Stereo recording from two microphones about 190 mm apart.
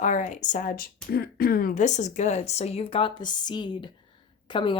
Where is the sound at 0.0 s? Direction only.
40° left (ahead or behind).